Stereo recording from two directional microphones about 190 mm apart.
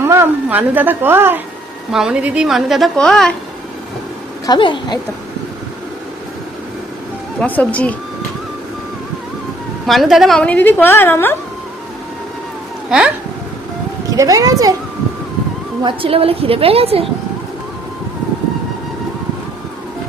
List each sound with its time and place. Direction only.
0.0 s a woman's voice: 15° right (ahead or behind); by 3.3 s 5° left (ahead or behind)
4.4 s a woman's voice: 25° left (ahead or behind)
7.3 s a woman's voice: 10° left (ahead or behind)
9.8 s a woman's voice: centre (ahead or behind)
14.1 s a woman's voice: 20° right (ahead or behind)
15.8 s a woman's voice: 25° right (ahead or behind)